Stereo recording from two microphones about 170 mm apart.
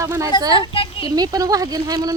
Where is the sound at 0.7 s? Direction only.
30° left (ahead or behind).